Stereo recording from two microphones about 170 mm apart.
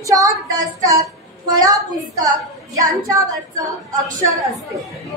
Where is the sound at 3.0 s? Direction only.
20° right (ahead or behind).